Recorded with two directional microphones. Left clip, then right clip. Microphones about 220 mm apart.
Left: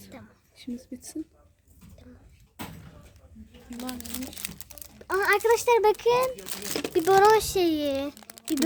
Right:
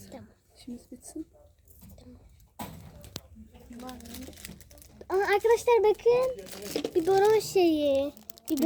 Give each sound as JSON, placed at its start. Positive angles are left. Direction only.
{"t": 0.0, "sound": "a sound", "side_deg": 0}
{"t": 0.5, "sound": "speech", "side_deg": 15}
{"t": 3.8, "sound": "speech", "side_deg": 50}
{"t": 4.9, "sound": "a child's voice", "side_deg": 5}
{"t": 6.3, "sound": "speech", "side_deg": 50}
{"t": 6.9, "sound": "speech", "side_deg": 20}
{"t": 8.3, "sound": "a sound", "side_deg": 15}